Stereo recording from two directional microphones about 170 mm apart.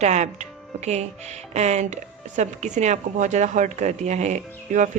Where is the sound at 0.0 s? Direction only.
40° right (ahead or behind).